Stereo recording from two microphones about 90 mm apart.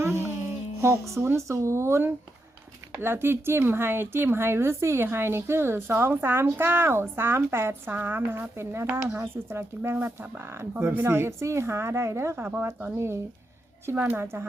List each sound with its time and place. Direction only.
0.8 s speech: 30° right (ahead or behind)